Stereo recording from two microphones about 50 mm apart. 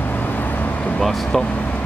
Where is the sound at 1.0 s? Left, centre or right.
Centre.